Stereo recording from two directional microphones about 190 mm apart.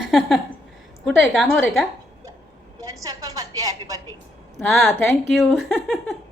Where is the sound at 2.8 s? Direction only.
20° right (ahead or behind).